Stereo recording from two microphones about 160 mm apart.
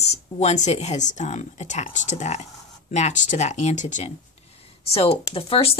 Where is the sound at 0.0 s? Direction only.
40° left (ahead or behind).